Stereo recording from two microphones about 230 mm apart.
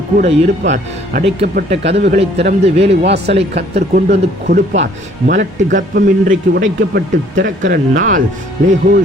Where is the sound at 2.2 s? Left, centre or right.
Right.